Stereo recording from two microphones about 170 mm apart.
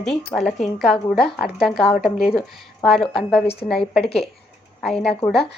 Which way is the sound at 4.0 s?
35° left (ahead or behind).